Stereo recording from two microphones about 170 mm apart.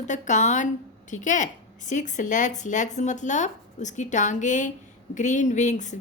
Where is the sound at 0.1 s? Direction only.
45° left (ahead or behind).